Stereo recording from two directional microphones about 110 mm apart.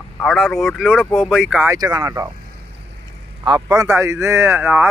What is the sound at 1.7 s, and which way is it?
Speech, 35° right (ahead or behind).